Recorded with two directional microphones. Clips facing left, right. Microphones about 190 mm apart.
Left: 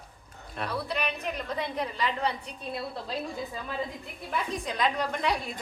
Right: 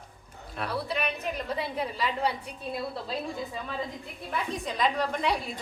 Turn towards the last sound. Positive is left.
turn(degrees=0)  # may be behind; listen again after turning